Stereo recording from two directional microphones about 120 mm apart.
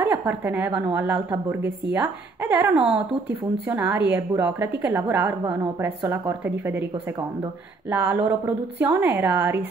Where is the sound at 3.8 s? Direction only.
15° right (ahead or behind).